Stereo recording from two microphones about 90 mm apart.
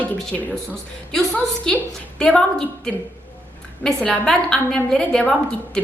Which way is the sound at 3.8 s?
5° left (ahead or behind).